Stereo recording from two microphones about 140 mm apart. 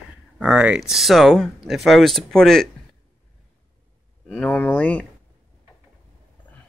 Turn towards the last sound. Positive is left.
turn(degrees=10)  # may be behind; listen again after turning